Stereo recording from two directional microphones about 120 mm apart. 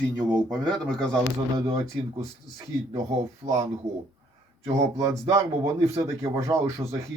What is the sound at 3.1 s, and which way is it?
Speech, 65° right (ahead or behind).